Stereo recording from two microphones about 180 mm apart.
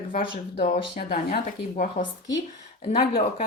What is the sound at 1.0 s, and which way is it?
Speech, 55° left (ahead or behind).